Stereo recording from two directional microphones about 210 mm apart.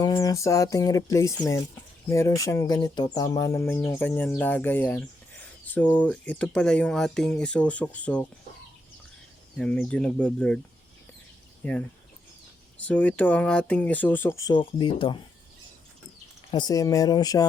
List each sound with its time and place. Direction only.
0.0 s speech: 15° left (ahead or behind)
9.6 s speech: 5° left (ahead or behind)
11.6 s speech: 5° left (ahead or behind)
12.8 s speech: 5° left (ahead or behind); by 15.2 s 25° left (ahead or behind)
16.5 s speech: 20° left (ahead or behind)